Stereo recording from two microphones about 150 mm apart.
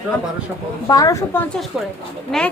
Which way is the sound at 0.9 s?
25° left (ahead or behind).